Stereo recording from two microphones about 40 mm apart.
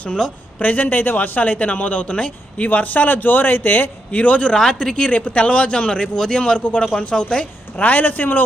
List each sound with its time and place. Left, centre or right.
0.2 s speech: centre
0.6 s a man's voice: left
2.0 s a man's voice: left
2.6 s a man's voice: left
4.5 s speech: centre
4.9 s a man's voice: left
7.8 s a man's voice: left